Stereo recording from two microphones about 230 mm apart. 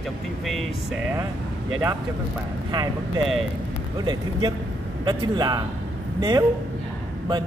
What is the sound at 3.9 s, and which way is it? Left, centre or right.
Speech, centre.